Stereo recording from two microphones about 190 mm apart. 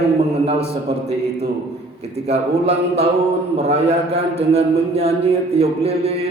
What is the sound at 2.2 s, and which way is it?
A man's voice, 35° right (ahead or behind).